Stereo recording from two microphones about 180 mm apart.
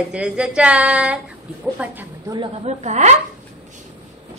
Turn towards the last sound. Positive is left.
turn(degrees=-40)  # may be behind; listen again after turning